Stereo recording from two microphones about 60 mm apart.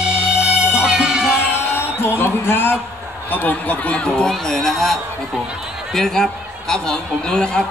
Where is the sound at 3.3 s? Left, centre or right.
Left.